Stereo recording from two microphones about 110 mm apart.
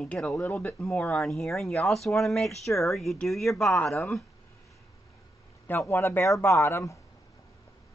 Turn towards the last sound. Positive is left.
turn(degrees=30)  # may be behind; listen again after turning